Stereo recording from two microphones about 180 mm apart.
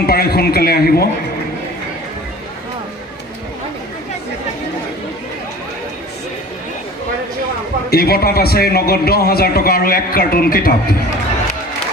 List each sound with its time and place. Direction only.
0.0 s a man's voice: 60° left (ahead or behind)
7.9 s a man's voice: 60° left (ahead or behind)